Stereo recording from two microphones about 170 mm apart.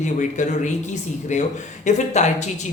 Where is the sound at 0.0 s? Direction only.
45° left (ahead or behind).